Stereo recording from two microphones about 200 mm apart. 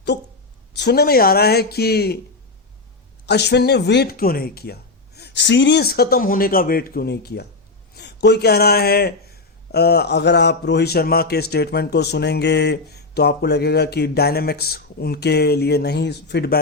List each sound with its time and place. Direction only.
0.8 s a man's voice: 55° left (ahead or behind)
3.2 s a man's voice: 55° left (ahead or behind)